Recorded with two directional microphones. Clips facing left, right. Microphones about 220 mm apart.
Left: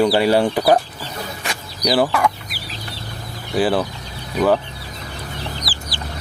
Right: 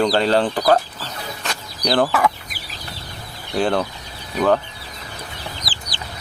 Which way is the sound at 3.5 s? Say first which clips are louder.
Left 2 dB; 5° left (ahead or behind).